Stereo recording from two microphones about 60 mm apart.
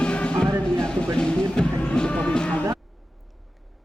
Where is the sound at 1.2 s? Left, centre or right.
Centre.